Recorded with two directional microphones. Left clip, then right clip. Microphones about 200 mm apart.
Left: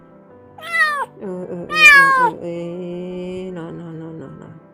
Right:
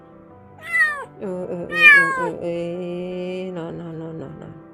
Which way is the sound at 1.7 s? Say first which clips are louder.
Left 3 dB; 30° left (ahead or behind).